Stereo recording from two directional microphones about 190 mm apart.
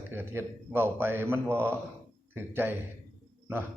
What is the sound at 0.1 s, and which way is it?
A man's voice, 10° right (ahead or behind).